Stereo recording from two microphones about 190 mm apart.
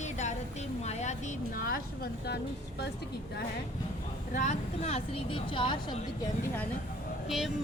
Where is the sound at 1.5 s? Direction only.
50° left (ahead or behind).